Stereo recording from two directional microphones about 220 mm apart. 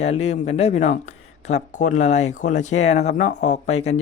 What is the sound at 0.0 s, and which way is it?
Speech, 30° left (ahead or behind).